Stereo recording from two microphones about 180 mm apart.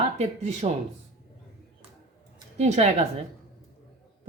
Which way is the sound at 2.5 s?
35° right (ahead or behind).